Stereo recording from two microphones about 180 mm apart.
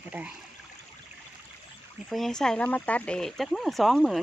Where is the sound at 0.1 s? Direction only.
5° right (ahead or behind).